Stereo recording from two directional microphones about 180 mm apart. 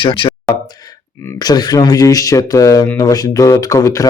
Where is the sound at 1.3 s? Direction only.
20° left (ahead or behind).